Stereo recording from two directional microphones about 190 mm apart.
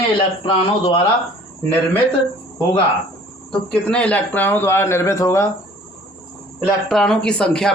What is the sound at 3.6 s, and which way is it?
Speech, 5° left (ahead or behind).